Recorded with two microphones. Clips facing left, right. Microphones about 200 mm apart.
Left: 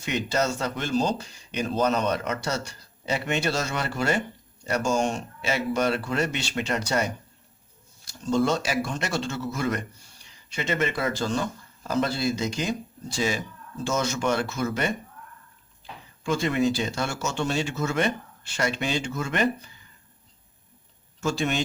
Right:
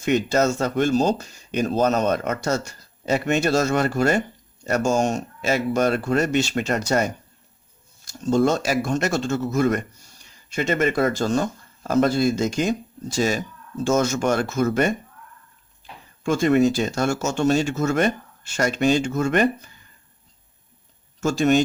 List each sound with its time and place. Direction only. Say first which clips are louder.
0.0 s speech: right 7 dB; 45° right (ahead or behind)
16.2 s speech: right 6 dB; 50° right (ahead or behind)
21.2 s speech: right 8 dB; 45° right (ahead or behind)